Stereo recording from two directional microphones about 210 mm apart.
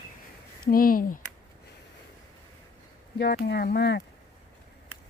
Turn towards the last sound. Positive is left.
turn(degrees=55)  # may be behind; listen again after turning